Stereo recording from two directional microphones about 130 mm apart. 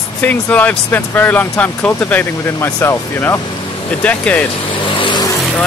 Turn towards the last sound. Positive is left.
turn(degrees=0)  # may be behind; listen again after turning